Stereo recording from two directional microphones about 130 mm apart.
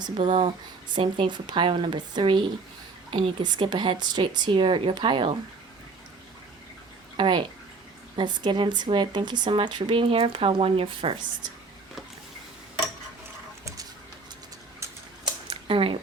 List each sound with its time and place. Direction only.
0.0 s speech: 40° right (ahead or behind)
7.2 s speech: 40° right (ahead or behind)
14.8 s typewriter: 20° right (ahead or behind)
15.4 s a sound: 45° right (ahead or behind)